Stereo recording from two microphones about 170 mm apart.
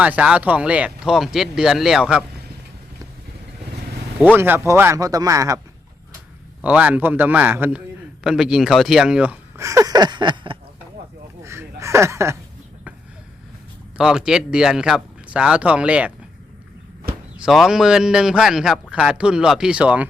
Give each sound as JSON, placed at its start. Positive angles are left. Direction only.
{"t": 0.0, "sound": "a man's voice", "side_deg": -10}
{"t": 4.4, "sound": "speech", "side_deg": -15}
{"t": 6.6, "sound": "a man's voice", "side_deg": -10}
{"t": 9.6, "sound": "a sound", "side_deg": -20}
{"t": 11.4, "sound": "a sound", "side_deg": -15}
{"t": 14.0, "sound": "a man's voice", "side_deg": -5}
{"t": 17.3, "sound": "a man's voice", "side_deg": 0}